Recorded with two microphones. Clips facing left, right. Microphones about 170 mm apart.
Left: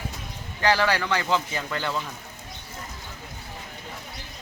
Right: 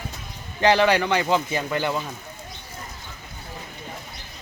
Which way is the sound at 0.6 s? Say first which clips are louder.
Right 5 dB; 20° right (ahead or behind).